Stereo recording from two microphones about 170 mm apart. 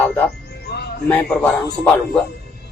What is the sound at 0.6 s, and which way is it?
Music, 75° left (ahead or behind).